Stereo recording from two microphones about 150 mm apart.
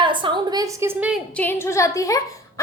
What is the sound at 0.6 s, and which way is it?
Speech, 20° right (ahead or behind).